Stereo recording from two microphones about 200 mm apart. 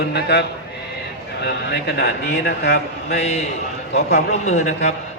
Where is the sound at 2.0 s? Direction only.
55° left (ahead or behind).